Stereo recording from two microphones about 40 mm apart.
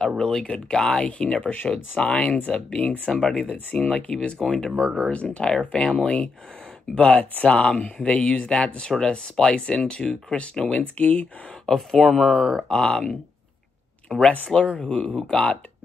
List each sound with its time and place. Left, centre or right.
0.2 s speech: centre; by 3.1 s left
3.1 s speech: centre
5.1 s speech: left
10.8 s speech: left
11.6 s speech: centre
12.0 s speech: centre
12.6 s speech: centre